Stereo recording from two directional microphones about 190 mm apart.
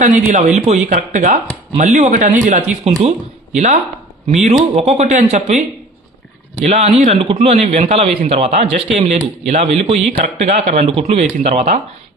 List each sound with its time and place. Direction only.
0.0 s speech: 40° right (ahead or behind)
6.7 s speech: 35° right (ahead or behind)